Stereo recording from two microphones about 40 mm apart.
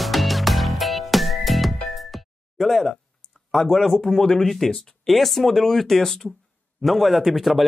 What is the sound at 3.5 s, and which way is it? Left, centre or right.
Speech, centre.